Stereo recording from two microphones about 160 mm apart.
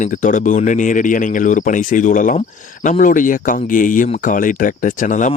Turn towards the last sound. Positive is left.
turn(degrees=55)  # may be behind; listen again after turning